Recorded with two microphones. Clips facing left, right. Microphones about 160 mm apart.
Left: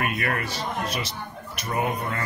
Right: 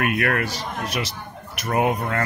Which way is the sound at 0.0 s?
60° right (ahead or behind).